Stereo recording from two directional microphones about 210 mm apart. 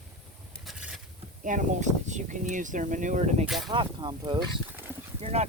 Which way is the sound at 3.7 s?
20° right (ahead or behind).